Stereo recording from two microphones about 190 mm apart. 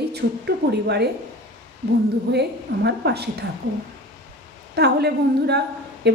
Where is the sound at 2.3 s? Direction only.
60° right (ahead or behind).